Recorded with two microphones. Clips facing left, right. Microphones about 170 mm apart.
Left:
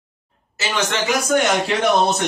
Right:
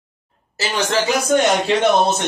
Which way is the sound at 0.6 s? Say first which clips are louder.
Right 3 dB; 35° right (ahead or behind).